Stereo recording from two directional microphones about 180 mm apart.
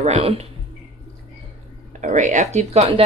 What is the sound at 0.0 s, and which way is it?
Speech, 35° right (ahead or behind).